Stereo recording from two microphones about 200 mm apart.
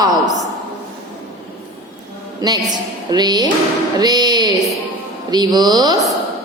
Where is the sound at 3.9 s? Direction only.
20° right (ahead or behind).